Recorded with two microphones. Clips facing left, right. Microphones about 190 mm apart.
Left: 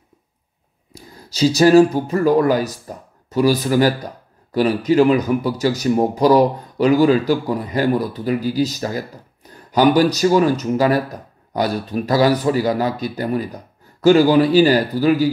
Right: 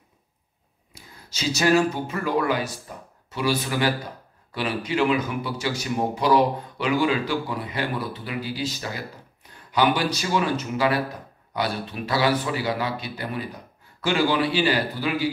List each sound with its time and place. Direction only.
0.9 s speech: 35° left (ahead or behind)